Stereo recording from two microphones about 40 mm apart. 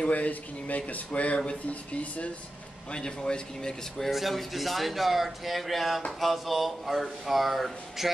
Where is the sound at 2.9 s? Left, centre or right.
Left.